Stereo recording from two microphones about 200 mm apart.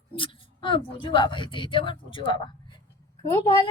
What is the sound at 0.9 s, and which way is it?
A woman's voice, 25° left (ahead or behind).